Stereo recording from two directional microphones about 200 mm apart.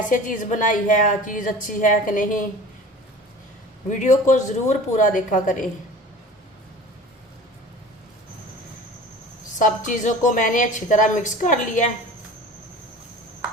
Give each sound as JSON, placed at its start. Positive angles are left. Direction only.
{"t": 0.1, "sound": "a woman's voice", "side_deg": 40}
{"t": 3.8, "sound": "a woman's voice", "side_deg": 35}
{"t": 9.6, "sound": "a woman's voice", "side_deg": 40}